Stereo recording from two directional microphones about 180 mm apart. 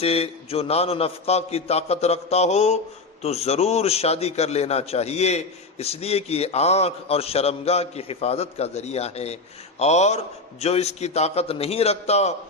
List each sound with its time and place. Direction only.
0.0 s a man's voice: 35° left (ahead or behind)